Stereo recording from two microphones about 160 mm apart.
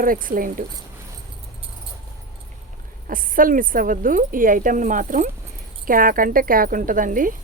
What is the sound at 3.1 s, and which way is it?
A woman's voice, 60° right (ahead or behind).